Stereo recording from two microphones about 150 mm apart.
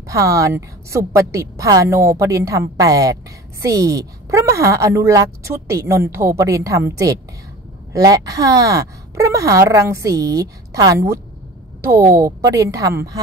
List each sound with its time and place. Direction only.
0.1 s a woman's voice: 20° right (ahead or behind)